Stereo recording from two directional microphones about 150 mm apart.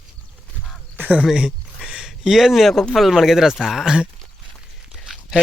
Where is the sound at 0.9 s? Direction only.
10° right (ahead or behind).